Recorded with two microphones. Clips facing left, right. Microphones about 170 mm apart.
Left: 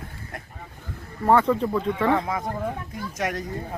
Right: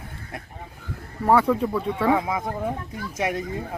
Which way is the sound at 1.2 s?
10° right (ahead or behind).